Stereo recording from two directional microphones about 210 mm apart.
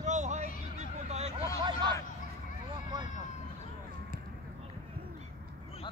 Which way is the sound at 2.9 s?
20° right (ahead or behind).